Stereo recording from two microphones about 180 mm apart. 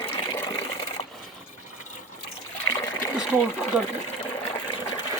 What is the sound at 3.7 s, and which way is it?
Speech, 5° right (ahead or behind).